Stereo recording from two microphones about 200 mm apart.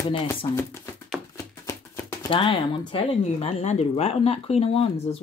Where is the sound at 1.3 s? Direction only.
15° left (ahead or behind).